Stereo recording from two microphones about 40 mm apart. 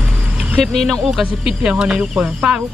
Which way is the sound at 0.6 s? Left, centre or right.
Centre.